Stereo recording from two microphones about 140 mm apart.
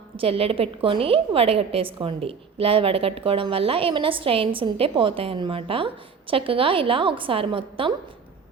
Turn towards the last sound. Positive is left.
turn(degrees=-40)  # may be behind; listen again after turning